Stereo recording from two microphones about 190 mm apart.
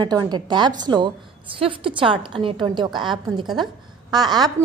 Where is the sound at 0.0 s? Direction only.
20° right (ahead or behind).